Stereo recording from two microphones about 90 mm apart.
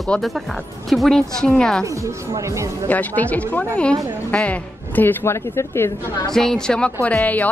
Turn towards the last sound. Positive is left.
turn(degrees=20)  # may be behind; listen again after turning